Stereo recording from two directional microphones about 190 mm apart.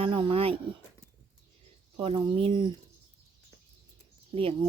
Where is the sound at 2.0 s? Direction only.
25° right (ahead or behind).